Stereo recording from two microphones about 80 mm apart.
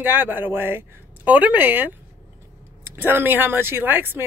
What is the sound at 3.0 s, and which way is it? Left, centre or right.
Speech, right.